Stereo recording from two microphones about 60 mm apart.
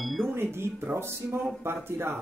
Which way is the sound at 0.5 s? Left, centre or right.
Right.